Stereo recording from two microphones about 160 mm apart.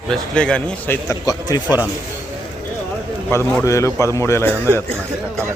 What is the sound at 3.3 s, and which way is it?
Speech, 15° left (ahead or behind).